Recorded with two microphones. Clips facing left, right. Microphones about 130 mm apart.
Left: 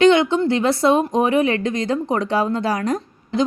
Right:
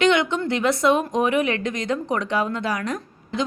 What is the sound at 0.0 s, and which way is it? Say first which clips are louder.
Speech: left 5 dB; 30° left (ahead or behind).